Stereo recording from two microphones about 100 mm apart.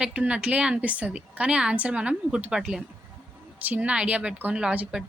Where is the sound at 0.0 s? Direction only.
15° right (ahead or behind).